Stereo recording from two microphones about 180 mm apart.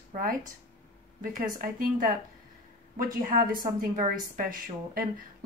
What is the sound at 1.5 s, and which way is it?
A woman's voice, 50° right (ahead or behind).